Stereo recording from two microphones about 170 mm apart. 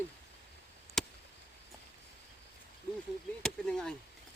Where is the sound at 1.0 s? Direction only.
Centre (ahead or behind).